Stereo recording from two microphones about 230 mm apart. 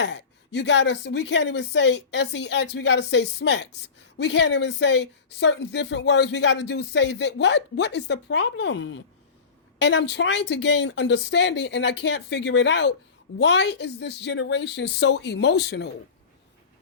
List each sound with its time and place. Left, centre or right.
0.0 s speech: left